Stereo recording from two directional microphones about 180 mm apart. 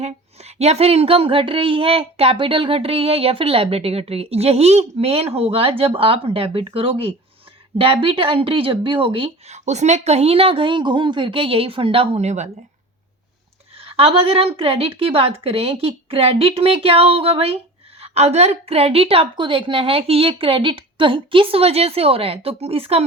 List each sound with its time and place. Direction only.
0.0 s speech: 35° right (ahead or behind)
13.7 s speech: 30° right (ahead or behind)